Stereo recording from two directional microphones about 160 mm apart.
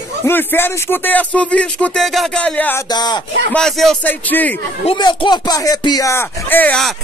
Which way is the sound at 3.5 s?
5° left (ahead or behind).